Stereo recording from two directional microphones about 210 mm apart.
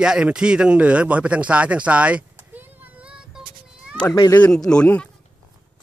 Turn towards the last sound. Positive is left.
turn(degrees=5)  # may be behind; listen again after turning